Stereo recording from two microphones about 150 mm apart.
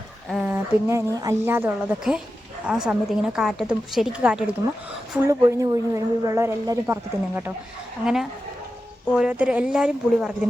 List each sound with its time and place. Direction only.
0.3 s a sound: 5° right (ahead or behind)
0.5 s a woman's voice: 20° right (ahead or behind)
5.1 s a woman's voice: 20° right (ahead or behind)
8.0 s a woman's voice: 5° right (ahead or behind)